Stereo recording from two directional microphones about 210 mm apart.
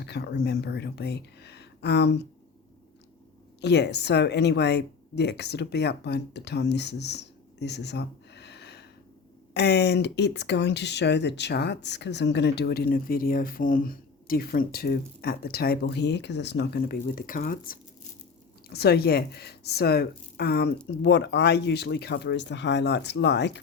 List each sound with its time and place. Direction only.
0.0 s speech: 55° left (ahead or behind)
3.6 s speech: 55° left (ahead or behind)